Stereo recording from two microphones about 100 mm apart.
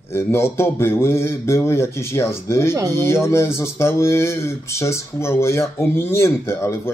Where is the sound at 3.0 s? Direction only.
25° left (ahead or behind).